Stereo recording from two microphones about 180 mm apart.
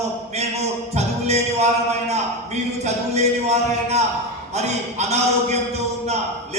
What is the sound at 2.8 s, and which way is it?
Speech, 40° right (ahead or behind).